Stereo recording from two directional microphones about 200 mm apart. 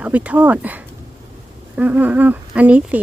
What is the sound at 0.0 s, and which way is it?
Speech, 5° right (ahead or behind).